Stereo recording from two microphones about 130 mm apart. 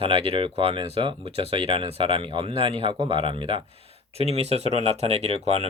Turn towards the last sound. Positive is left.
turn(degrees=-50)  # may be behind; listen again after turning